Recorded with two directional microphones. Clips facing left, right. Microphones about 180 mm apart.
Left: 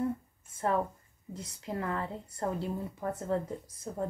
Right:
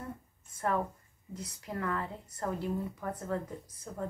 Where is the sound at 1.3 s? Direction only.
25° left (ahead or behind).